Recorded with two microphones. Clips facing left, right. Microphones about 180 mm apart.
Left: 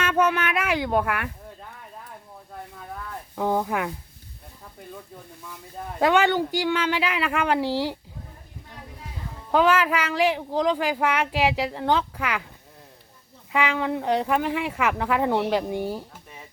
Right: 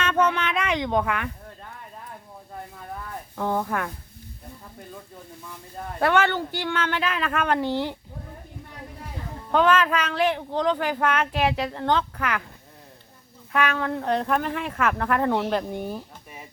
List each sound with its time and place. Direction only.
0.0 s a sound: 10° left (ahead or behind)
3.3 s speech: 10° left (ahead or behind)
6.0 s speech: 15° left (ahead or behind)
9.5 s speech: 10° left (ahead or behind)
13.5 s speech: 15° left (ahead or behind)